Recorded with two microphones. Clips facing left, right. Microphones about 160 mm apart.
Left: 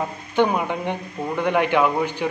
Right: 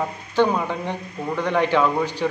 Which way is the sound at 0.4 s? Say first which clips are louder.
Even; 15° left (ahead or behind).